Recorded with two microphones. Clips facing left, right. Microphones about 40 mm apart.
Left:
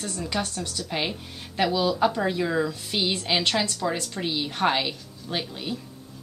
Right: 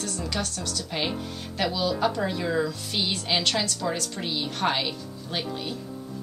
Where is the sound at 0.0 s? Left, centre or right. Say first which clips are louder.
Left 1 dB; centre.